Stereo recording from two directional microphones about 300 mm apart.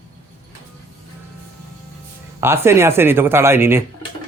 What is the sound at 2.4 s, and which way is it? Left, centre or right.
Speech, centre.